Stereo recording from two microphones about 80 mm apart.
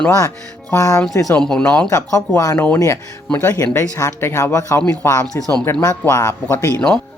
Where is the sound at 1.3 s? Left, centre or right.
Centre.